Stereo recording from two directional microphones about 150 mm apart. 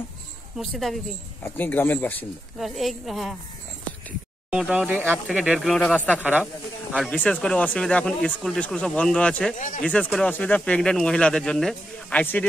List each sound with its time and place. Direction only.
0.6 s speech: centre (ahead or behind)
1.4 s speech: 15° left (ahead or behind)
2.6 s speech: centre (ahead or behind)
4.5 s speech: 5° right (ahead or behind); by 6.2 s 10° left (ahead or behind)
6.2 s speech: 10° right (ahead or behind)
7.1 s speech: 10° left (ahead or behind)
9.6 s speech: 60° left (ahead or behind)
9.8 s speech: 5° left (ahead or behind)